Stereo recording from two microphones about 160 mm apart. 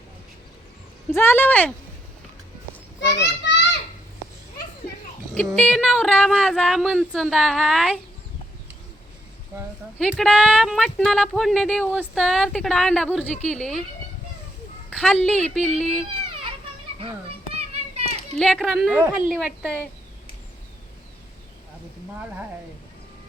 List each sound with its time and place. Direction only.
1.1 s speech: 15° left (ahead or behind)
3.2 s children playing: 90° left
5.3 s speech: 5° left (ahead or behind)
10.0 s speech: centre (ahead or behind)
14.8 s a woman's voice: 5° left (ahead or behind)
17.0 s children playing: 35° right (ahead or behind)
18.3 s a woman's voice: centre (ahead or behind)